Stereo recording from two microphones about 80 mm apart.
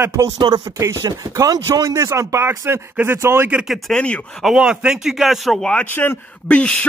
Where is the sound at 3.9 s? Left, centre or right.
Centre.